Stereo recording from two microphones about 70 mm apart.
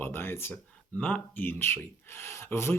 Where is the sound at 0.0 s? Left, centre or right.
Left.